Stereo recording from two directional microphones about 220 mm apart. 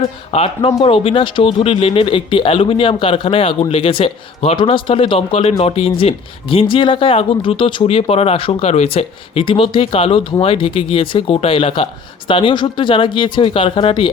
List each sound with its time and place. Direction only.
0.3 s speech: 25° left (ahead or behind)